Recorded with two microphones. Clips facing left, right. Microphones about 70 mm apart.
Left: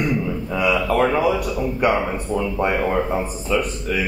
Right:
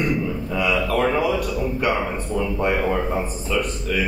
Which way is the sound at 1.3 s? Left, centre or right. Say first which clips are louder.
Left 1 dB; centre.